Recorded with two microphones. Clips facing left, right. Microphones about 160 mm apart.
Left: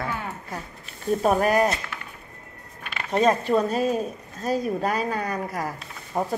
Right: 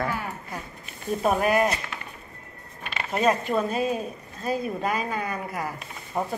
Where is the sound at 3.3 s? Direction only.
35° left (ahead or behind).